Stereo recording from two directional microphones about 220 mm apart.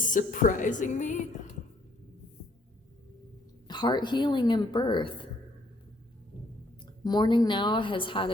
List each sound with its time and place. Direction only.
0.0 s a woman's voice: 35° left (ahead or behind)
3.7 s a woman's voice: 20° left (ahead or behind)
7.0 s a woman's voice: 20° left (ahead or behind)